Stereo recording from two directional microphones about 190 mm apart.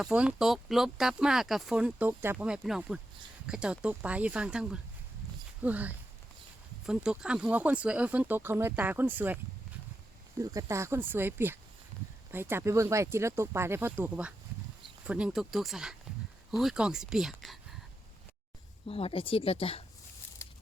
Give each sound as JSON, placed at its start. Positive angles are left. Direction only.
{"t": 0.0, "sound": "speech", "side_deg": -5}
{"t": 10.4, "sound": "speech", "side_deg": -20}
{"t": 18.9, "sound": "speech", "side_deg": 30}